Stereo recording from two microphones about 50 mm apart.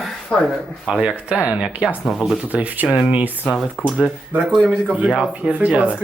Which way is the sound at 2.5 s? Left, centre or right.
Right.